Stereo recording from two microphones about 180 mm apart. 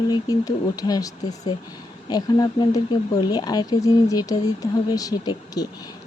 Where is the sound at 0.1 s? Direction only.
20° left (ahead or behind).